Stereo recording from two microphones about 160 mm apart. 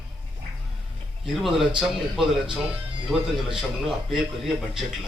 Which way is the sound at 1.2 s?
Centre (ahead or behind).